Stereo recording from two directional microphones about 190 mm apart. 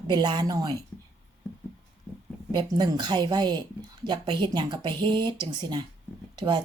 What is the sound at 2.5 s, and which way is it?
Speech, 25° right (ahead or behind).